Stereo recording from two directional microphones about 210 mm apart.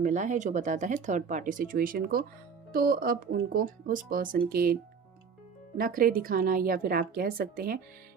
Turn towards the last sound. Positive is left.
turn(degrees=-45)  # may be behind; listen again after turning